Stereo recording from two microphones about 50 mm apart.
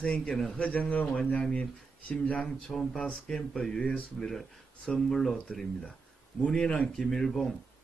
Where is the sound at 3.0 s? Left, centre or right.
Left.